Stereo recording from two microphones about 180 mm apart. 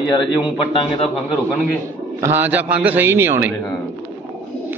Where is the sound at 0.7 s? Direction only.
25° left (ahead or behind).